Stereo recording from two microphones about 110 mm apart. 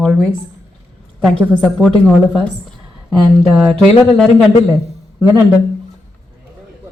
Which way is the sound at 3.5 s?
5° right (ahead or behind).